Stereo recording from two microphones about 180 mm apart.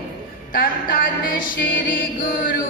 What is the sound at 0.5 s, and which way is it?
Music, 55° left (ahead or behind).